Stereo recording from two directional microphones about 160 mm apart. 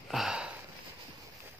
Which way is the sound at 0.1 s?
5° right (ahead or behind).